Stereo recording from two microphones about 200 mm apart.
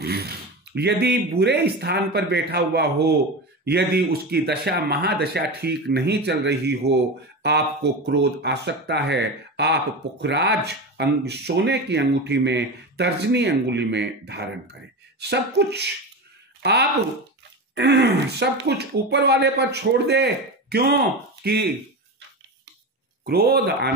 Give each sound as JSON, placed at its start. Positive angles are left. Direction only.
{"t": 0.0, "sound": "a sound", "side_deg": -50}
{"t": 0.7, "sound": "speech", "side_deg": -55}
{"t": 23.2, "sound": "speech", "side_deg": -50}